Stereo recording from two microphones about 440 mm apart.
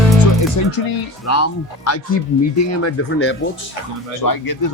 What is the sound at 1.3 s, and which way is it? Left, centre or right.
Speech, left.